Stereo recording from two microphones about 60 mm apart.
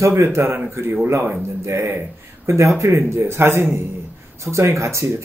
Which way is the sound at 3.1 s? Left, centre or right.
Right.